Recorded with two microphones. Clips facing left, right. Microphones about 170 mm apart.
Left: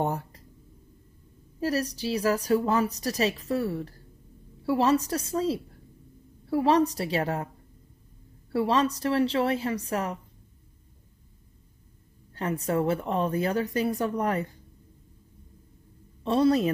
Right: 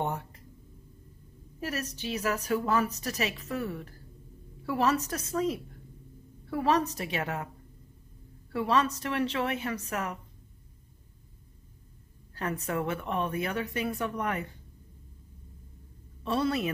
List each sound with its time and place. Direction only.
0.0 s a sound: 35° left (ahead or behind)
1.6 s a woman's voice: 35° left (ahead or behind)
8.5 s a woman's voice: 35° left (ahead or behind)
12.4 s a woman's voice: 30° left (ahead or behind)
16.3 s a woman's voice: 35° left (ahead or behind)